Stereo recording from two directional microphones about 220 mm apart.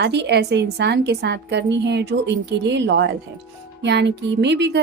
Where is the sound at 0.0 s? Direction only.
50° right (ahead or behind).